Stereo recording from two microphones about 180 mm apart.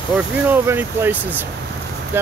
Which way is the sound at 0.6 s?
10° right (ahead or behind).